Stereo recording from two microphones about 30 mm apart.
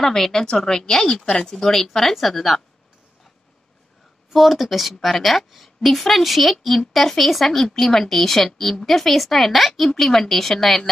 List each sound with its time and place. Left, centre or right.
0.0 s a woman's voice: centre
4.3 s a woman's voice: centre
7.6 s a woman's voice: centre